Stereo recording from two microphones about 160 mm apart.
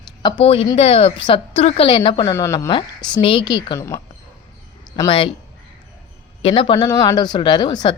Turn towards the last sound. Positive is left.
turn(degrees=30)  # may be behind; listen again after turning